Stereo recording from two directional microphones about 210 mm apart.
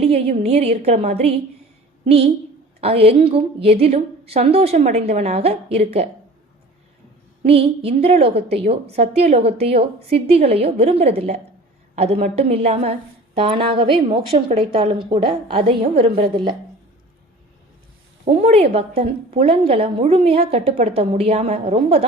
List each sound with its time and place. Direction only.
0.0 s a woman's voice: 30° right (ahead or behind)
7.4 s a woman's voice: 25° right (ahead or behind)
18.3 s a woman's voice: 30° right (ahead or behind)